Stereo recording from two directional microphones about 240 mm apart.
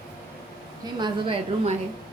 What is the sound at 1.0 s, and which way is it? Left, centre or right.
Speech, centre.